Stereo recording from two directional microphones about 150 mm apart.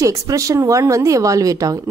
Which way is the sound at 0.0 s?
20° right (ahead or behind).